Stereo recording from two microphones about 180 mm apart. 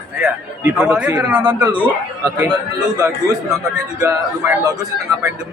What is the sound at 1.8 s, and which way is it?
Speech, 10° right (ahead or behind).